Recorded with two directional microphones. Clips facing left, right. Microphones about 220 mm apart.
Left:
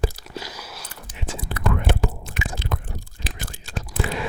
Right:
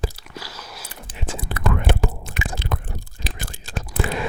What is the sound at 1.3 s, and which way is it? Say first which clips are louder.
Whispering: right 1 dB; 65° right (ahead or behind).